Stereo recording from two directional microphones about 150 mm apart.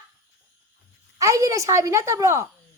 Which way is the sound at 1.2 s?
20° right (ahead or behind).